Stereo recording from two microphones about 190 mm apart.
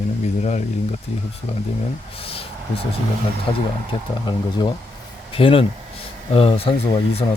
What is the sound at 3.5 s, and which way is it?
Speech, 25° left (ahead or behind).